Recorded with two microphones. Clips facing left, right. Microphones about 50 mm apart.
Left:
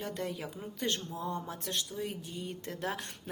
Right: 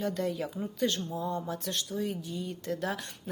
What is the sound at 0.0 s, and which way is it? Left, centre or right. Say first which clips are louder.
A woman's voice: right 6 dB; left.